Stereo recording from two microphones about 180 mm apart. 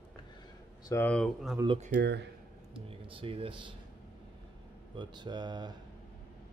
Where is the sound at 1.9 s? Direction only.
70° right (ahead or behind).